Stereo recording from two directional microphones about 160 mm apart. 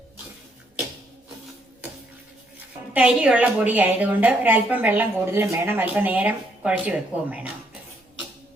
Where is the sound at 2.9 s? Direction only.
5° right (ahead or behind).